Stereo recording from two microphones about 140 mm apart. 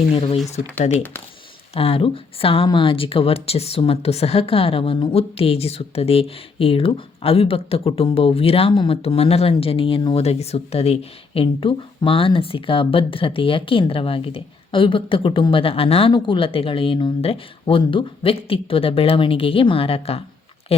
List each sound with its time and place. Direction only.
0.1 s speech: 45° left (ahead or behind)
1.7 s speech: 45° left (ahead or behind)
10.2 s speech: 50° left (ahead or behind)